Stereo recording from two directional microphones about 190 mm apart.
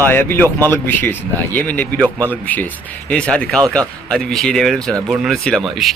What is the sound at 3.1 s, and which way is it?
Speech, 5° left (ahead or behind).